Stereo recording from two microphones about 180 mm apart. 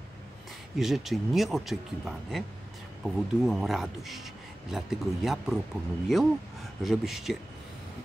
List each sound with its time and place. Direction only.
0.7 s speech: centre (ahead or behind)